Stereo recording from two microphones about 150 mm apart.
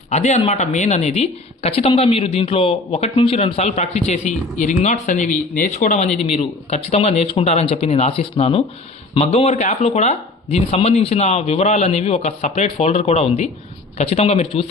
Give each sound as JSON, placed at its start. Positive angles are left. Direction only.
{"t": 0.1, "sound": "speech", "side_deg": 45}
{"t": 6.2, "sound": "speech", "side_deg": 40}